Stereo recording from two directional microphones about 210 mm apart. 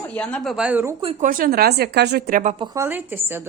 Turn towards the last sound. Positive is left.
turn(degrees=-10)  # may be behind; listen again after turning